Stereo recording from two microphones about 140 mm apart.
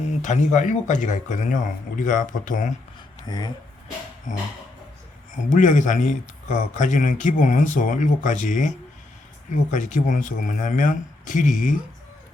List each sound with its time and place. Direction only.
0.2 s speech: 60° left (ahead or behind)
3.2 s speech: 30° left (ahead or behind)
5.3 s speech: 65° left (ahead or behind)
9.7 s speech: 65° left (ahead or behind)